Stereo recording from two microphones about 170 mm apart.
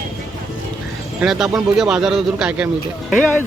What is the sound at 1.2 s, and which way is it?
Speech, 5° right (ahead or behind).